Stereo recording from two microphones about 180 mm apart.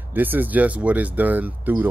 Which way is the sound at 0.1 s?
10° right (ahead or behind).